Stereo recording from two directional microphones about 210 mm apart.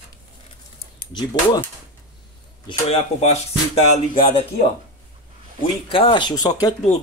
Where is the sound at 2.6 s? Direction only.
30° left (ahead or behind).